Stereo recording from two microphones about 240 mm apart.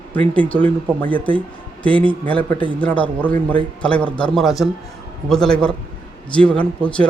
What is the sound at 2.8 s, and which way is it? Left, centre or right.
Speech, centre.